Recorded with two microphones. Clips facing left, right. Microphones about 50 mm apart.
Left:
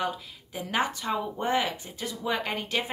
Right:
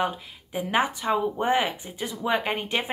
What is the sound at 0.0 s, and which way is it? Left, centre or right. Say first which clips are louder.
Speech: right 4 dB; right.